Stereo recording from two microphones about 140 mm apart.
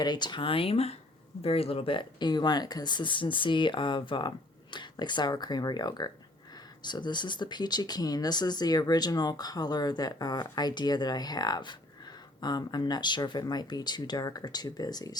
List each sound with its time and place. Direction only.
0.0 s speech: 30° left (ahead or behind)